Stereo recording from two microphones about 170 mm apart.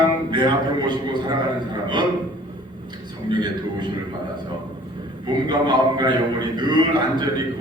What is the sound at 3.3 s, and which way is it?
Speech, 25° right (ahead or behind).